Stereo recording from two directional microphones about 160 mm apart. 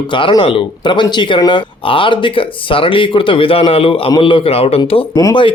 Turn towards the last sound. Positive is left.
turn(degrees=25)  # may be behind; listen again after turning